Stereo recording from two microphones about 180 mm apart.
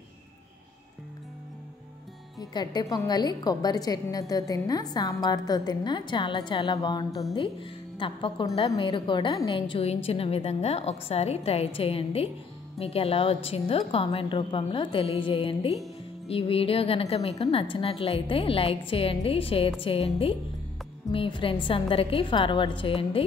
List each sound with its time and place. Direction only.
2.5 s a woman's voice: 25° left (ahead or behind)